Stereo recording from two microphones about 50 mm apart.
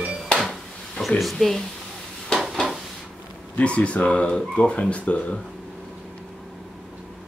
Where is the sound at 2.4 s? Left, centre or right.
Centre.